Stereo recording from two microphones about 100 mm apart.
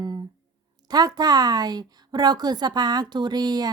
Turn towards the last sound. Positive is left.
turn(degrees=-40)  # may be behind; listen again after turning